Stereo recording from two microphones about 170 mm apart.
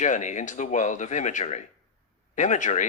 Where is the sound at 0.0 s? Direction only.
45° left (ahead or behind).